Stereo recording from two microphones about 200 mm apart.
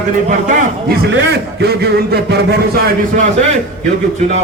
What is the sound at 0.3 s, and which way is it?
Speech, 40° right (ahead or behind).